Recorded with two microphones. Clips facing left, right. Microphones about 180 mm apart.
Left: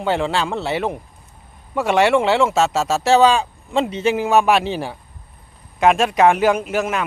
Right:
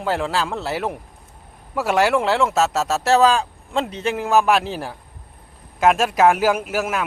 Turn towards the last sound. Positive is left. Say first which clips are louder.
# left 2 dB
turn(degrees=-5)  # may be behind; listen again after turning